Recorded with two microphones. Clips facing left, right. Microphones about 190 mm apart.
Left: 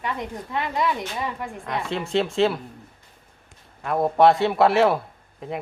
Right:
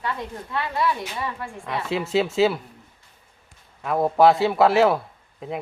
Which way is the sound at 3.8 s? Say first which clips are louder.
Even; centre (ahead or behind).